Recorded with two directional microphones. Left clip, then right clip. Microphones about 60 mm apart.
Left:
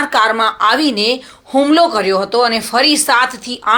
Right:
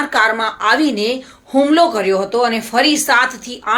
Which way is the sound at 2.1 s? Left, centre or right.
Left.